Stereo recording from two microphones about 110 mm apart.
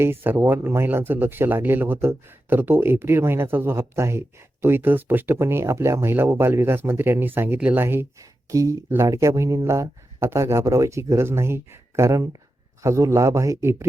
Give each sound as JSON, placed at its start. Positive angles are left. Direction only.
{"t": 0.0, "sound": "speech", "side_deg": -20}